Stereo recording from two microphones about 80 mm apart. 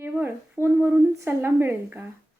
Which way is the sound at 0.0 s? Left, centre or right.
Right.